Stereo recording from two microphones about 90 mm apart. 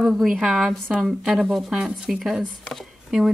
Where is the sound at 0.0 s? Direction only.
Centre (ahead or behind).